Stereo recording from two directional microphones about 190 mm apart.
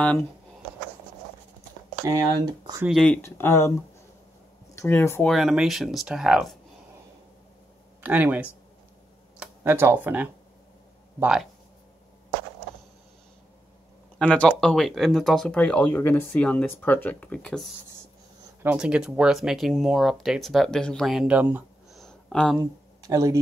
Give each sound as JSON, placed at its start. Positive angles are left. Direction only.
{"t": 2.0, "sound": "speech", "side_deg": -20}
{"t": 2.8, "sound": "speech", "side_deg": 0}
{"t": 4.7, "sound": "speech", "side_deg": 15}
{"t": 5.3, "sound": "speech", "side_deg": 0}
{"t": 8.0, "sound": "speech", "side_deg": -10}
{"t": 14.1, "sound": "speech", "side_deg": 5}
{"t": 18.6, "sound": "speech", "side_deg": -10}
{"t": 22.6, "sound": "speech", "side_deg": -15}